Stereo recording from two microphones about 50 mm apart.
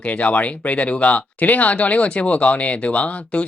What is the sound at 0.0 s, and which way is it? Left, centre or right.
Speech, left.